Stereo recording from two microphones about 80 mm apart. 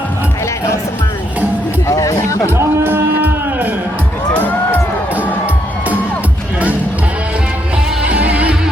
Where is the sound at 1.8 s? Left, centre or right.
Left.